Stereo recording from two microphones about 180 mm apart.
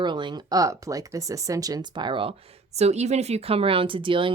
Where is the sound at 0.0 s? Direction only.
25° right (ahead or behind).